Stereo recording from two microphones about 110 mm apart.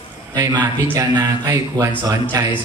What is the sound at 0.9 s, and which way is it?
Mantra, 35° right (ahead or behind).